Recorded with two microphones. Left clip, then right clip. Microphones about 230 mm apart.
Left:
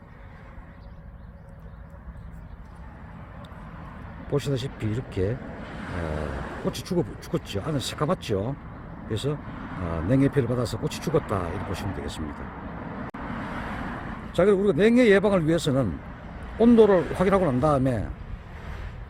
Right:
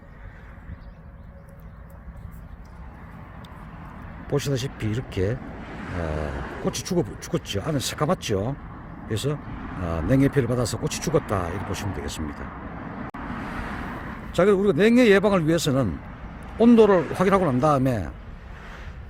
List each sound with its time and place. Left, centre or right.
4.3 s speech: centre
6.4 s speech: left
6.7 s speech: centre
13.5 s vehicle: left
14.3 s speech: centre